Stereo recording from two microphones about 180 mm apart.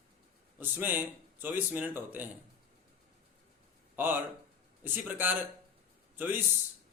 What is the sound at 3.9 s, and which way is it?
Speech, 10° right (ahead or behind).